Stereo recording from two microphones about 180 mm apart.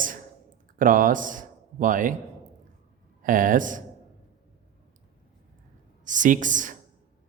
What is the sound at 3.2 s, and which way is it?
Speech, 50° right (ahead or behind).